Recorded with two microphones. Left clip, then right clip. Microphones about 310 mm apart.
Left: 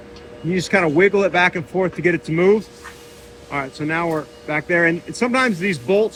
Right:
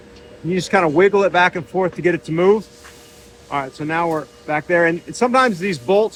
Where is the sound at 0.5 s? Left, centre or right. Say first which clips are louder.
Right 1 dB; centre.